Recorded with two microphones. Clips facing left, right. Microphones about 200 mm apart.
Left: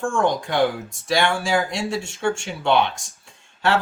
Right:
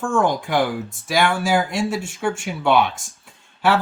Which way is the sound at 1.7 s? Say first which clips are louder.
Right 3 dB; 25° left (ahead or behind).